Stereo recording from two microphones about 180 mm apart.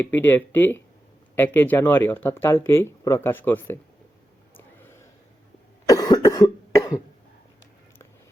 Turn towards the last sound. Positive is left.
turn(degrees=20)  # may be behind; listen again after turning